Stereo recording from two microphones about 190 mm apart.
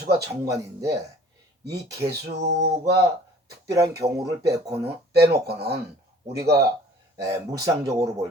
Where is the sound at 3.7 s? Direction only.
15° right (ahead or behind).